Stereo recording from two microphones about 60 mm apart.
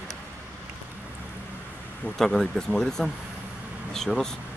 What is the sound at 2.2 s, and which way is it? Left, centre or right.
Speech, centre.